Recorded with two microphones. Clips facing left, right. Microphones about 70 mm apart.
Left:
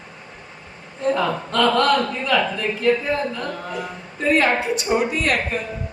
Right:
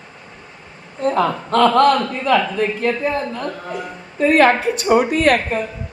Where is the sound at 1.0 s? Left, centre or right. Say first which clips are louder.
Right 3 dB; right.